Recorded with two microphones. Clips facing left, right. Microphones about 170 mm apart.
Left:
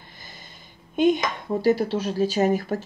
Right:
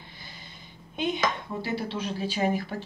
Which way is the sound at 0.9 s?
45° left (ahead or behind).